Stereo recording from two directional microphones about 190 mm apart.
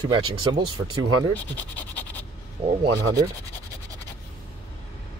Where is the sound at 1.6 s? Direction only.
10° left (ahead or behind).